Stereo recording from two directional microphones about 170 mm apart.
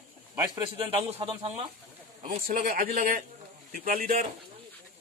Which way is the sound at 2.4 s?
55° right (ahead or behind).